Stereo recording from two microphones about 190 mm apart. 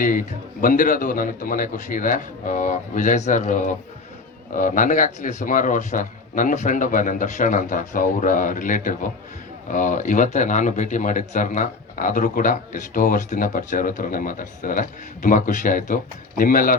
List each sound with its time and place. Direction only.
0.0 s speech: 45° left (ahead or behind)